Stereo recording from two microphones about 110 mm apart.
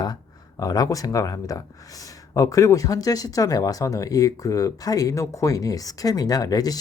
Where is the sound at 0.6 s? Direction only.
35° left (ahead or behind).